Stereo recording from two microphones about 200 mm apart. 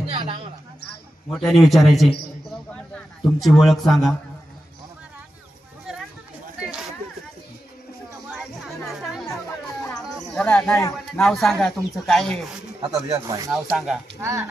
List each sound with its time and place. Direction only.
0.1 s a sound: 25° right (ahead or behind)
1.4 s speech: centre (ahead or behind)
3.3 s speech: centre (ahead or behind)
8.8 s music: centre (ahead or behind)
10.0 s a sound: centre (ahead or behind)
11.1 s speech: centre (ahead or behind)
12.8 s speech: 15° right (ahead or behind)
13.5 s speech: centre (ahead or behind)
14.2 s speech: 15° right (ahead or behind)